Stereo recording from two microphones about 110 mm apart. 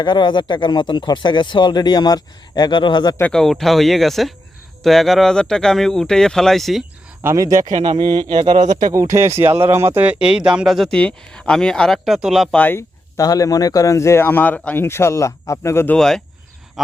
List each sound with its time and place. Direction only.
0.0 s speech: 45° left (ahead or behind)
3.3 s speech: 5° left (ahead or behind)
7.2 s speech: 30° right (ahead or behind)
7.7 s speech: 90° right
7.9 s speech: 45° right (ahead or behind)
8.5 s speech: 90° right
8.9 s speech: 30° right (ahead or behind)
10.0 s speech: 10° right (ahead or behind)
12.5 s speech: 15° left (ahead or behind)
13.1 s speech: 35° left (ahead or behind)
16.0 s speech: 5° left (ahead or behind)